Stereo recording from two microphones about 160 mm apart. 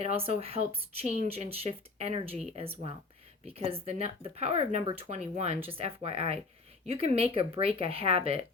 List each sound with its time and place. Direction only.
0.0 s speech: 40° right (ahead or behind)